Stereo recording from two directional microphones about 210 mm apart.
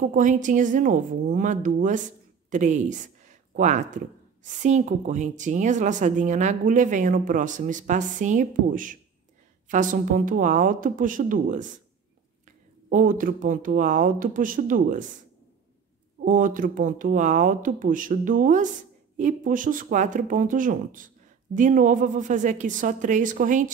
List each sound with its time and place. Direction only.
0.1 s speech: 35° right (ahead or behind)
12.9 s speech: 40° right (ahead or behind)
16.3 s speech: 40° right (ahead or behind)